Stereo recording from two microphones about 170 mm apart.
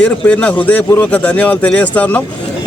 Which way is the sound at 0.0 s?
5° left (ahead or behind).